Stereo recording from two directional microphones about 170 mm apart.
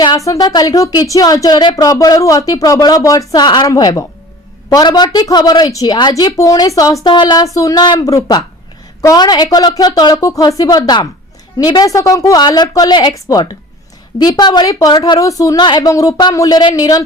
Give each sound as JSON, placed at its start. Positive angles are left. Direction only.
{"t": 0.3, "sound": "a woman's voice", "side_deg": 25}